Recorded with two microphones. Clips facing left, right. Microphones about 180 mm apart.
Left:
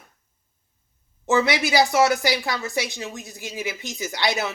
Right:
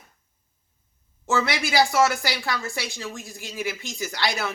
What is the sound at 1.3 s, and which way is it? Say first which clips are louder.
Speech: left 4 dB; 20° left (ahead or behind).